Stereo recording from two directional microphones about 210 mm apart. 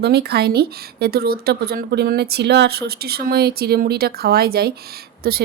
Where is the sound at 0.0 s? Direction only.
50° right (ahead or behind).